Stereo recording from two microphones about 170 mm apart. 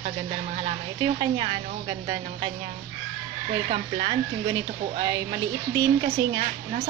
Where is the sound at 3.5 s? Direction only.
30° right (ahead or behind).